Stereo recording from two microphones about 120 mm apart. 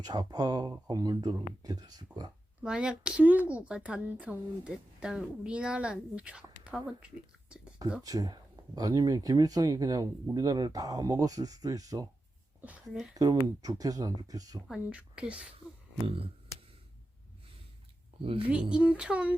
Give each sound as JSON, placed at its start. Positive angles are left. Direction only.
{"t": 0.0, "sound": "speech", "side_deg": -35}
{"t": 2.6, "sound": "speech", "side_deg": -10}
{"t": 8.0, "sound": "speech", "side_deg": -30}
{"t": 12.6, "sound": "speech", "side_deg": -10}
{"t": 13.1, "sound": "speech", "side_deg": -30}
{"t": 14.7, "sound": "speech", "side_deg": -10}
{"t": 16.0, "sound": "a sound", "side_deg": -50}
{"t": 18.2, "sound": "speech", "side_deg": -50}
{"t": 18.7, "sound": "speech", "side_deg": -10}